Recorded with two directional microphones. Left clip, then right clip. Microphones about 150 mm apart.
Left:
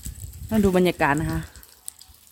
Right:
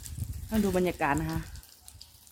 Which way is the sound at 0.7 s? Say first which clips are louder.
Left 8 dB; 90° left.